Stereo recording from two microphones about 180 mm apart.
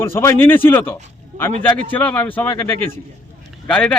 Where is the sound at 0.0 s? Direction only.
15° left (ahead or behind).